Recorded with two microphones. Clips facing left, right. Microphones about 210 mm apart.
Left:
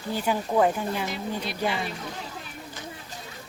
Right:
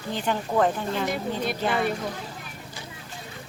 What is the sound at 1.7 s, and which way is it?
Speech, 50° right (ahead or behind).